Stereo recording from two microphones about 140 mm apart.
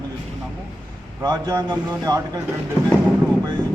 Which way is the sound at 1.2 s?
30° right (ahead or behind).